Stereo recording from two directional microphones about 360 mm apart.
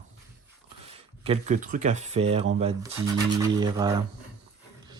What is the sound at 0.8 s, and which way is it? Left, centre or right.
Speech, centre.